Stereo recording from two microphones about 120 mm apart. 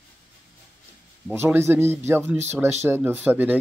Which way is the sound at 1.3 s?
20° right (ahead or behind).